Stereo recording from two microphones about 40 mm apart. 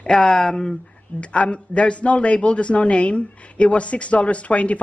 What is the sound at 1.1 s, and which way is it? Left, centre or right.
Speech, left.